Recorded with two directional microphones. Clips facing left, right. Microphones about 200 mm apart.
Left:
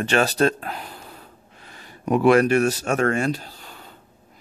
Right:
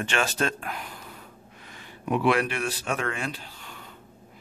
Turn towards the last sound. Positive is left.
turn(degrees=35)  # may be behind; listen again after turning